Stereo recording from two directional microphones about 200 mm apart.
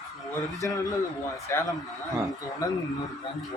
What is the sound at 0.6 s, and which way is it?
A man's voice, 15° left (ahead or behind).